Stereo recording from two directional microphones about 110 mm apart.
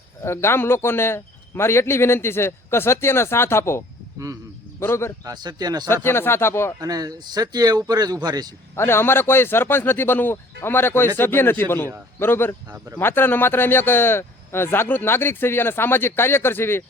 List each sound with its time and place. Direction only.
0.2 s speech: 25° left (ahead or behind)
5.2 s speech: 40° right (ahead or behind)
5.9 s speech: 20° left (ahead or behind)
6.7 s speech: 35° right (ahead or behind)
8.7 s speech: 20° left (ahead or behind)